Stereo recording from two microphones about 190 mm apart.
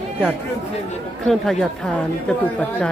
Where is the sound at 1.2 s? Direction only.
Centre (ahead or behind).